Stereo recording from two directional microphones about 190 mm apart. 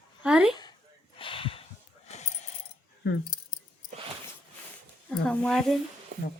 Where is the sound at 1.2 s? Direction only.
30° left (ahead or behind).